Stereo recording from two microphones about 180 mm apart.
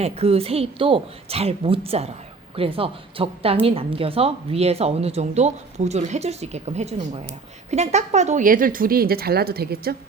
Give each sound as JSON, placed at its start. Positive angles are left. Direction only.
{"t": 0.0, "sound": "a woman's voice", "side_deg": -35}